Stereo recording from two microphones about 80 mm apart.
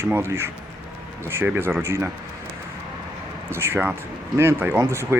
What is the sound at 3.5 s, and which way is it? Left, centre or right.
Speech, right.